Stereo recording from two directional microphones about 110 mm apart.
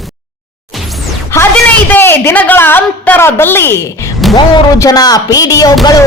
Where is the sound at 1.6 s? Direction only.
20° left (ahead or behind).